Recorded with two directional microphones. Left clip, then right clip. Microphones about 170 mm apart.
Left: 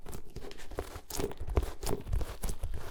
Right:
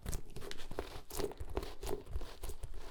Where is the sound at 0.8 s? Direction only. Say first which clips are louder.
Left 4 dB; 10° left (ahead or behind).